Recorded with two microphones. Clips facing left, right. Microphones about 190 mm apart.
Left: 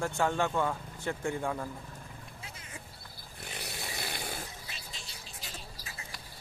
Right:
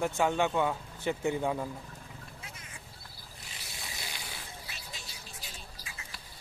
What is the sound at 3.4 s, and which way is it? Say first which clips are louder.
Snoring: left 7 dB; 60° left (ahead or behind).